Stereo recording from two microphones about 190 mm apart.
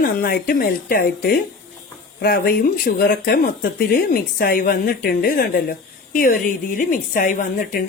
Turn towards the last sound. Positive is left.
turn(degrees=50)  # may be behind; listen again after turning